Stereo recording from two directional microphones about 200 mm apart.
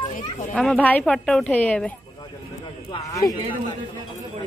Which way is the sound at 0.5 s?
5° left (ahead or behind).